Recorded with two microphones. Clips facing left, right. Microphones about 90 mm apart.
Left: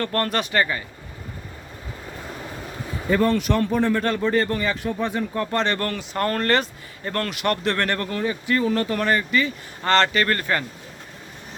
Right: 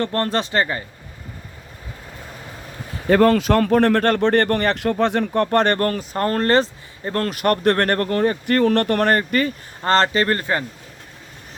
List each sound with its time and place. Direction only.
0.0 s speech: 30° right (ahead or behind)
3.1 s speech: 90° right; by 7.3 s 30° right (ahead or behind)
7.3 s speech: 45° right (ahead or behind)
9.8 s speech: 35° right (ahead or behind)